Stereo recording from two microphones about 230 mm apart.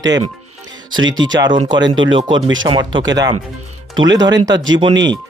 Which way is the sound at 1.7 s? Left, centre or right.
Right.